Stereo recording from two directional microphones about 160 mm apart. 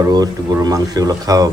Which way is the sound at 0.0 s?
20° right (ahead or behind).